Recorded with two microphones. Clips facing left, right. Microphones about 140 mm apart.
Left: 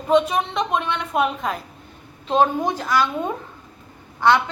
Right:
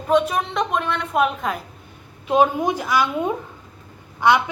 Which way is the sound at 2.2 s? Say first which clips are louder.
Right 1 dB; 10° right (ahead or behind).